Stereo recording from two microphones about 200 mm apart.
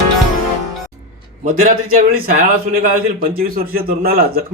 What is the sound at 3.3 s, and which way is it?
A man's voice, 45° right (ahead or behind).